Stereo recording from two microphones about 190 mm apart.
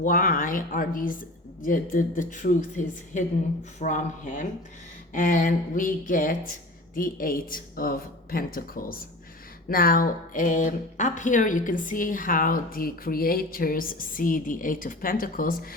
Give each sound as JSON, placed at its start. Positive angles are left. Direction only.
{"t": 0.0, "sound": "speech", "side_deg": 45}